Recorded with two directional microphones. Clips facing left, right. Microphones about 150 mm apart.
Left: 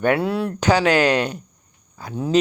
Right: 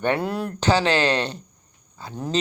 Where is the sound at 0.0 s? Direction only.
5° left (ahead or behind).